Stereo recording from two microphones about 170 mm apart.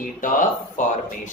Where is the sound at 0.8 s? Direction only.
50° left (ahead or behind).